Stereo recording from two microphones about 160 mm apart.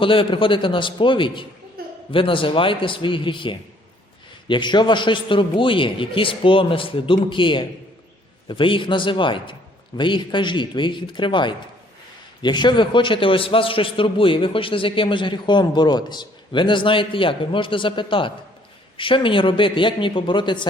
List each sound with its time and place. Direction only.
0.0 s a man's voice: 35° left (ahead or behind)
1.8 s a sound: 70° right (ahead or behind)
2.1 s a man's voice: 35° left (ahead or behind)